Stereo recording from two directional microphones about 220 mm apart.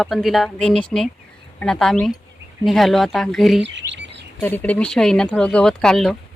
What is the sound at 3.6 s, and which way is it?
Chirp, 55° right (ahead or behind).